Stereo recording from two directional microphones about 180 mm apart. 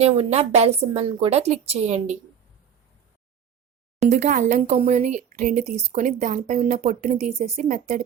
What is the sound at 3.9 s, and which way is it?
Speech, 40° right (ahead or behind).